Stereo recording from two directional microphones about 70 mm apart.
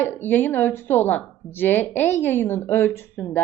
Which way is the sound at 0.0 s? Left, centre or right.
Left.